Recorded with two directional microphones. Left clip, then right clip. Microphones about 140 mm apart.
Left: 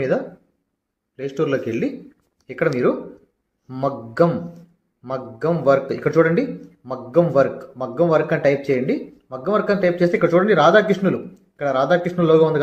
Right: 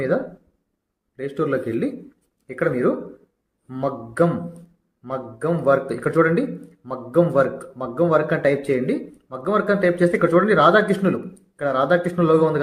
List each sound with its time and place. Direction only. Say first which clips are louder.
1.1 s a man's voice: left 1 dB; 25° left (ahead or behind)